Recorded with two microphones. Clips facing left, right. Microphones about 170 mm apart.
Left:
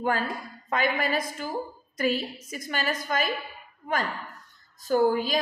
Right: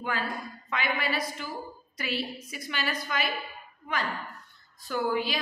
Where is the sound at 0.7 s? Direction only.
45° left (ahead or behind).